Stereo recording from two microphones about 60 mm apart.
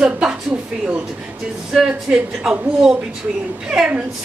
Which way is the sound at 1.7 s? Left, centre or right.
Centre.